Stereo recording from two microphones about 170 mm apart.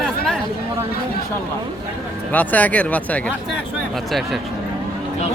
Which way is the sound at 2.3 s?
10° left (ahead or behind).